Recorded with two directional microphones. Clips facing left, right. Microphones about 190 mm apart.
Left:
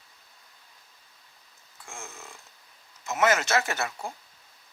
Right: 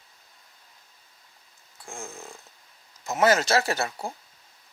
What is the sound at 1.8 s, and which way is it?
Speech, 35° right (ahead or behind).